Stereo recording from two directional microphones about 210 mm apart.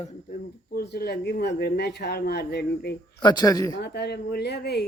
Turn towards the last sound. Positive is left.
turn(degrees=50)  # may be behind; listen again after turning